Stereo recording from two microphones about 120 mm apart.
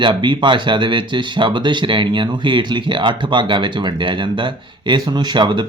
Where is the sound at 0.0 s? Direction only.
40° right (ahead or behind).